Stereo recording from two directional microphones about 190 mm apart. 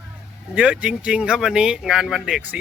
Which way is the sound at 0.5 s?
5° right (ahead or behind).